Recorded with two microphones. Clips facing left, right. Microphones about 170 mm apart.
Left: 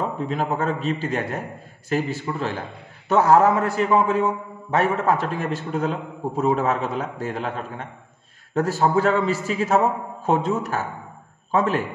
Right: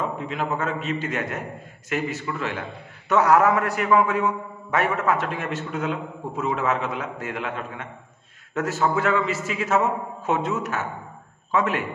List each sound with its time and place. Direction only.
0.0 s a man's voice: 35° left (ahead or behind)